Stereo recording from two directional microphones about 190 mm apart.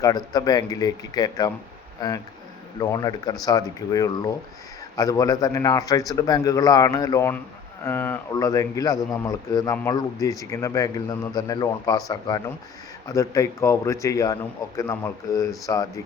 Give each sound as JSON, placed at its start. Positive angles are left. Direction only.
{"t": 0.0, "sound": "a man's voice", "side_deg": 20}